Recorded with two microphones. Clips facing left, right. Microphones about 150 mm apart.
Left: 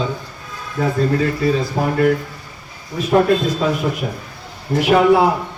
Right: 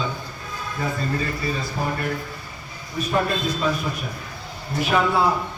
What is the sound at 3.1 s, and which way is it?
Speech, 60° left (ahead or behind).